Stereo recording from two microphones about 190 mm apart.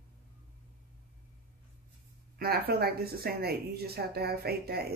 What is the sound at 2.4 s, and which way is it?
Speech, 55° right (ahead or behind).